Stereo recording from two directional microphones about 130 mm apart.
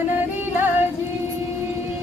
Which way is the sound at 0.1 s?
15° right (ahead or behind).